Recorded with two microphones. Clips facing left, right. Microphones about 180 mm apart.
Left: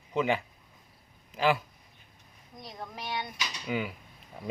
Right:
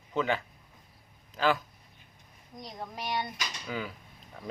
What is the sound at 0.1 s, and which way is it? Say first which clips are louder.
Speech: left 2 dB; 15° left (ahead or behind).